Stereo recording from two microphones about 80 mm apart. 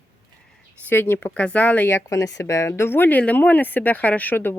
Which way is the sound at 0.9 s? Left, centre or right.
Left.